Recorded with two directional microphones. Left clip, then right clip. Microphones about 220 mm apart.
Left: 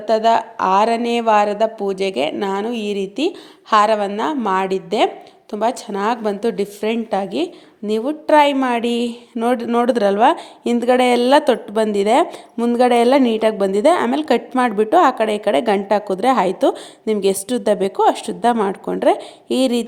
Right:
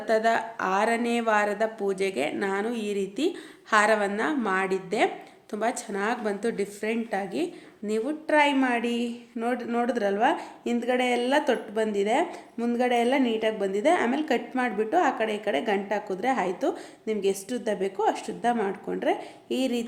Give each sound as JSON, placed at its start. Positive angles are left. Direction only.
{"t": 0.1, "sound": "speech", "side_deg": 25}